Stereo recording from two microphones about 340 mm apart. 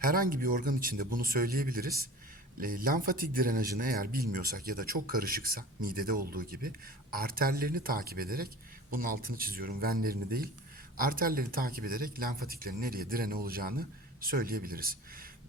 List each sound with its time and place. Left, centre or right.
0.0 s a man's voice: right